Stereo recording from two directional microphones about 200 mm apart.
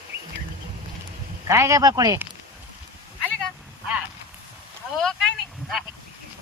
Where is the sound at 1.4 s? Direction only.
15° right (ahead or behind).